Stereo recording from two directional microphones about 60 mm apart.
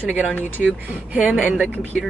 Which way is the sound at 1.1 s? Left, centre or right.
Right.